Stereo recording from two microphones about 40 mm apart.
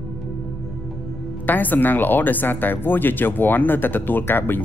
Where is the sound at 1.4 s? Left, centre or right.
Left.